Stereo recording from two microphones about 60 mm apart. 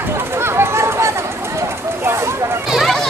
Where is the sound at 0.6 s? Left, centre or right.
Right.